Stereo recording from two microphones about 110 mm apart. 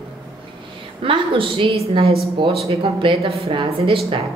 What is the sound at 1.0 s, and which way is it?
A woman's voice, 50° right (ahead or behind).